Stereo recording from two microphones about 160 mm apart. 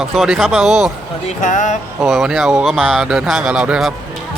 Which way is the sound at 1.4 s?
50° left (ahead or behind).